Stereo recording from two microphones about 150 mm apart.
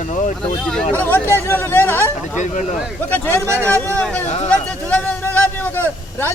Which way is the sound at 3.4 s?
20° right (ahead or behind).